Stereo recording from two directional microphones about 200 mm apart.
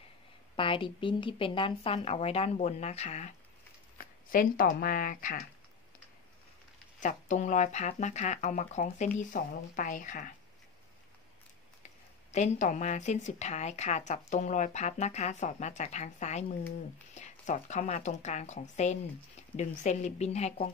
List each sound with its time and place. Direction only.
0.6 s speech: 25° left (ahead or behind)
4.0 s speech: 45° left (ahead or behind)
7.0 s speech: 40° left (ahead or behind)
11.8 s speech: 35° left (ahead or behind)